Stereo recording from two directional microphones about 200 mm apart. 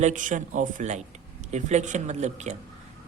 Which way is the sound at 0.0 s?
40° right (ahead or behind).